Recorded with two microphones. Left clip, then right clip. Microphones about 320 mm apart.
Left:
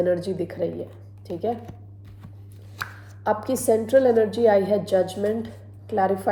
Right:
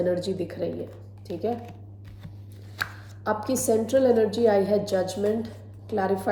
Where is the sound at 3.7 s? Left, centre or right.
Centre.